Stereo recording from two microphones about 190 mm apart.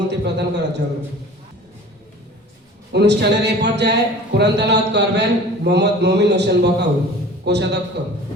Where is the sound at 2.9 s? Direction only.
60° right (ahead or behind).